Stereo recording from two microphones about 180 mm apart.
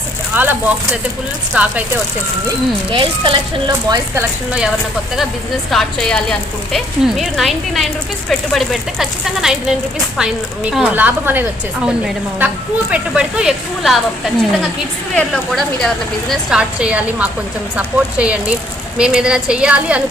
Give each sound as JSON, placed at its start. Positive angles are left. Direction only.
{"t": 0.3, "sound": "a woman's voice", "side_deg": -10}
{"t": 1.5, "sound": "a woman's voice", "side_deg": -5}
{"t": 2.9, "sound": "speech", "side_deg": -25}
{"t": 5.7, "sound": "a woman's voice", "side_deg": 5}
{"t": 15.1, "sound": "a woman's voice", "side_deg": 5}